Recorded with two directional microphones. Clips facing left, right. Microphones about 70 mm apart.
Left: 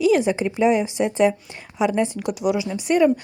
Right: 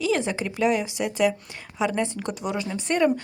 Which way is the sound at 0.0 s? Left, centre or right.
Centre.